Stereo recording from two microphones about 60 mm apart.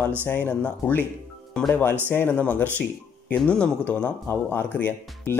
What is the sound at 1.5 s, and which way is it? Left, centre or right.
Speech, centre.